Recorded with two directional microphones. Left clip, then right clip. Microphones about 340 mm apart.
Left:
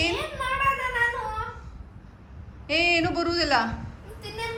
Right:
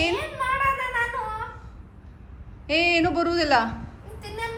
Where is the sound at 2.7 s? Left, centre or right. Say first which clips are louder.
Right 2 dB; centre.